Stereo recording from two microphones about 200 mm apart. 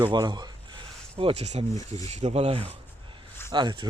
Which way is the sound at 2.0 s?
30° right (ahead or behind).